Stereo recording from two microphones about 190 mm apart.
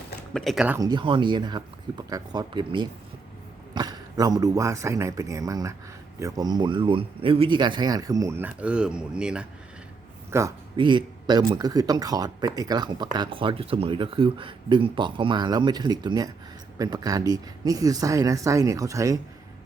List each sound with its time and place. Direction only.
0.3 s speech: centre (ahead or behind)
0.8 s speech: 25° right (ahead or behind); by 9.5 s 5° right (ahead or behind)
10.3 s speech: 20° right (ahead or behind)